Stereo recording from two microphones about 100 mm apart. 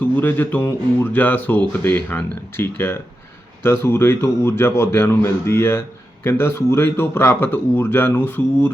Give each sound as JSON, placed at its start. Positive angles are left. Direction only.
{"t": 0.0, "sound": "speech", "side_deg": 20}